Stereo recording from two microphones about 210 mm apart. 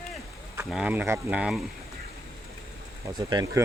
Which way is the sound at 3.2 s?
20° right (ahead or behind).